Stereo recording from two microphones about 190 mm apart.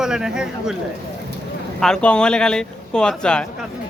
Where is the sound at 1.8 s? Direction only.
5° left (ahead or behind).